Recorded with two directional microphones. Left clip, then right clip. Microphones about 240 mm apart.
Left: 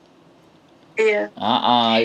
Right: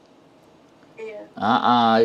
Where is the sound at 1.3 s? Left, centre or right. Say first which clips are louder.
Right 5 dB; right.